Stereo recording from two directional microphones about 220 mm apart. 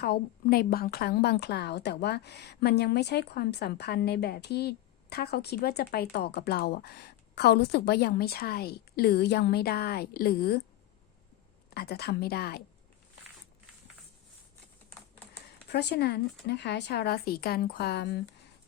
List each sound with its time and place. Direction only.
0.0 s a woman's voice: 45° left (ahead or behind)
11.7 s a woman's voice: 45° left (ahead or behind)
15.7 s a woman's voice: 50° left (ahead or behind)